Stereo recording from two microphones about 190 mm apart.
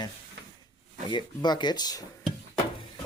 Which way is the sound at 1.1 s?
20° left (ahead or behind).